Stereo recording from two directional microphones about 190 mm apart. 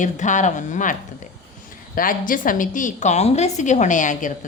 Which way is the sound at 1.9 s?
45° left (ahead or behind).